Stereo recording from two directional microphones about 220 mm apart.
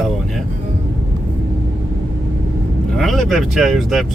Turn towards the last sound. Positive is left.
turn(degrees=0)  # may be behind; listen again after turning